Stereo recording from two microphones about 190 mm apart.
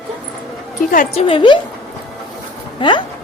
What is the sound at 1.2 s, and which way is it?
Speech, 25° left (ahead or behind).